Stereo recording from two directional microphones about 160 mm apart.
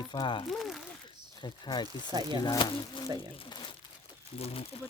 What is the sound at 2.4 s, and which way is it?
Speech, 25° left (ahead or behind).